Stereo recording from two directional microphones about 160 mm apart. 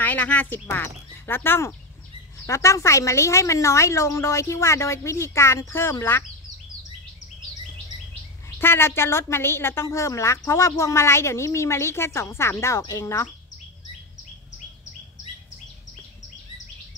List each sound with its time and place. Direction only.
0.0 s a woman's voice: 10° left (ahead or behind)
8.5 s a woman's voice: 15° left (ahead or behind)